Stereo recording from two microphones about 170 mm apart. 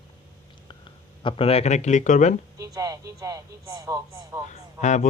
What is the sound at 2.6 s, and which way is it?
Speech, 20° right (ahead or behind).